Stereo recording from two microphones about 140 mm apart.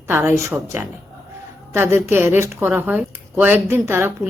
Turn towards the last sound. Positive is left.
turn(degrees=-15)  # may be behind; listen again after turning